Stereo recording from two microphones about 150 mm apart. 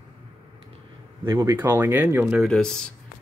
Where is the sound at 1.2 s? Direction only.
20° right (ahead or behind).